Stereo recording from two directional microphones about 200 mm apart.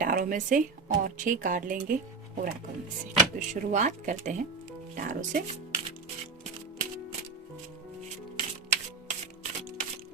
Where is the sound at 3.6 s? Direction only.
40° right (ahead or behind).